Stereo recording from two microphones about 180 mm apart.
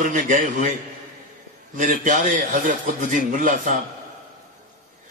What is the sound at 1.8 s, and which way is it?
A man's voice, 45° right (ahead or behind).